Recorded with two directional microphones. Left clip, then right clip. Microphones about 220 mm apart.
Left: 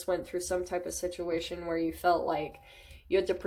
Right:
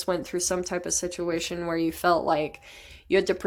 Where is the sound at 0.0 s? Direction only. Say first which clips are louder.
Right 5 dB; 45° right (ahead or behind).